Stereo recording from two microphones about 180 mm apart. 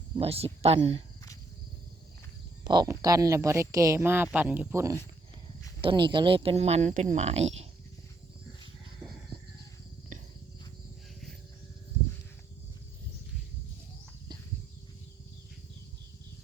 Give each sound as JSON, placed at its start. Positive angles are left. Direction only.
{"t": 0.2, "sound": "speech", "side_deg": -35}
{"t": 2.6, "sound": "speech", "side_deg": -20}
{"t": 5.8, "sound": "speech", "side_deg": -25}